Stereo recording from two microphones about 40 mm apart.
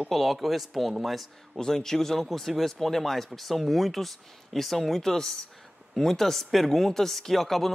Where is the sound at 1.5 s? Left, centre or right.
Centre.